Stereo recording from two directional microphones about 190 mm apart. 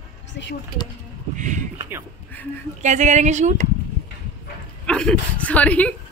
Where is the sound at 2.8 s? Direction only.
40° right (ahead or behind).